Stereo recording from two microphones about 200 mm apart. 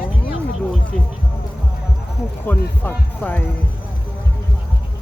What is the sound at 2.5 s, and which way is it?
Music, 10° left (ahead or behind).